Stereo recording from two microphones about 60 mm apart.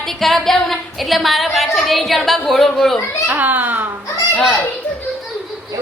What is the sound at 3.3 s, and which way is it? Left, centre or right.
Speech, right.